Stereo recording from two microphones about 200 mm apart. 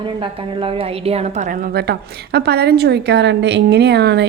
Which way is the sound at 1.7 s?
55° right (ahead or behind).